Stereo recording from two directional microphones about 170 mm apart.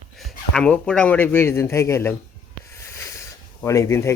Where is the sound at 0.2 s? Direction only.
Centre (ahead or behind).